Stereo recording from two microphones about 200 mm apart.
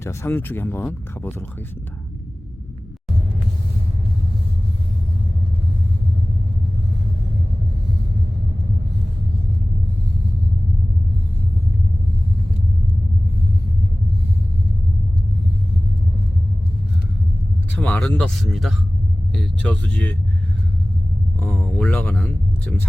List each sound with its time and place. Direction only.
0.0 s speech: 15° left (ahead or behind)
17.7 s speech: 10° left (ahead or behind)
21.3 s speech: 10° left (ahead or behind)